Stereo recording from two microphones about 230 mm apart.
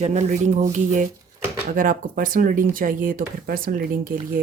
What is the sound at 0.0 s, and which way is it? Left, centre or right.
Speech, right.